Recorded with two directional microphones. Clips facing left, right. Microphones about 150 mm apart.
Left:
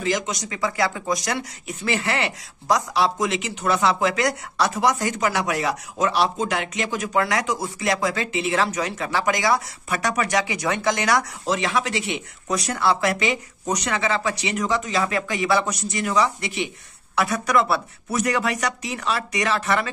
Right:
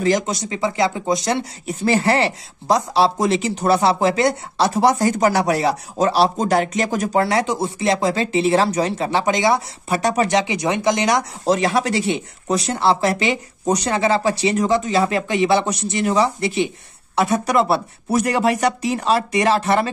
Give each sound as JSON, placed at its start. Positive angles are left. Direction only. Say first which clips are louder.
{"t": 0.0, "sound": "speech", "louder": "right 6 dB", "side_deg": -35}
{"t": 11.4, "sound": "speech", "louder": "right 5 dB", "side_deg": -40}